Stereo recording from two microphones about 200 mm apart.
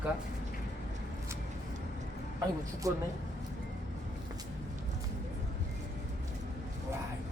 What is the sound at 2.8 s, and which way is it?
Speech, 15° right (ahead or behind).